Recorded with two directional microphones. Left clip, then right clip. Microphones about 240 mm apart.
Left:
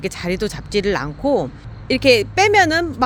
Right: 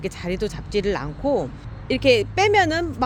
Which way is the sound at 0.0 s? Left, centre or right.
Centre.